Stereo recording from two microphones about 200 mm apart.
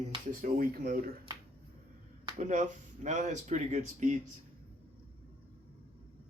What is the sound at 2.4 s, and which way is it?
Speech, 40° right (ahead or behind).